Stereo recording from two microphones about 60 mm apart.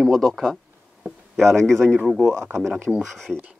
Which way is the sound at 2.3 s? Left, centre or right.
Right.